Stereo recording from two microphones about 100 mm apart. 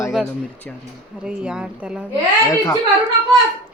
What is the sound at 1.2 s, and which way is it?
Speech, 10° right (ahead or behind).